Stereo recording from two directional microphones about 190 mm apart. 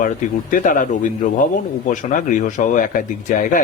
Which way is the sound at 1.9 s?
40° left (ahead or behind).